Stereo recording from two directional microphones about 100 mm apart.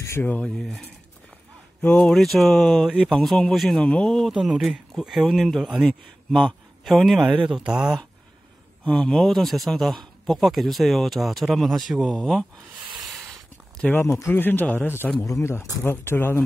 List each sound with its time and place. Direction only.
0.2 s speech: 15° left (ahead or behind)
0.5 s a man's voice: centre (ahead or behind)
7.2 s speech: 10° right (ahead or behind)
8.8 s a man's voice: 10° left (ahead or behind)
13.0 s a sound: centre (ahead or behind)
13.7 s speech: 15° left (ahead or behind)